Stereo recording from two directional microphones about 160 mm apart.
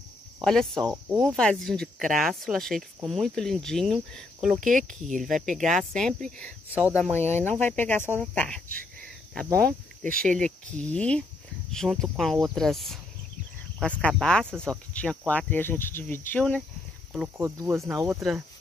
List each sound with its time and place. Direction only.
0.4 s speech: 5° left (ahead or behind)
6.7 s speech: 10° right (ahead or behind)
7.0 s speech: 10° left (ahead or behind)
8.2 s a sound: 5° left (ahead or behind)
9.7 s speech: 60° right (ahead or behind)
10.2 s speech: 5° left (ahead or behind)
17.4 s speech: 15° right (ahead or behind)